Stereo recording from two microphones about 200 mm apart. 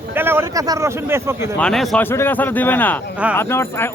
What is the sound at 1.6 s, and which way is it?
Speech, 5° left (ahead or behind).